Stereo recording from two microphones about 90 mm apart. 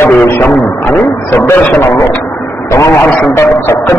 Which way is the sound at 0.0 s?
25° left (ahead or behind).